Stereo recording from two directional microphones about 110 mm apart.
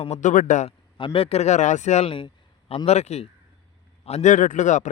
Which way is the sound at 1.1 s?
70° left (ahead or behind).